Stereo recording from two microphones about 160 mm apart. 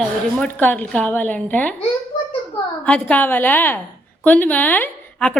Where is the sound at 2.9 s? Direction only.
10° left (ahead or behind).